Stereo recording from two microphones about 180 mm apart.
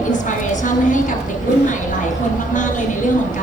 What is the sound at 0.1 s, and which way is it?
Speech, 45° left (ahead or behind).